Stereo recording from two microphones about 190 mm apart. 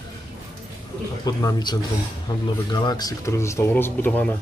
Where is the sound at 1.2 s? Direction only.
20° left (ahead or behind).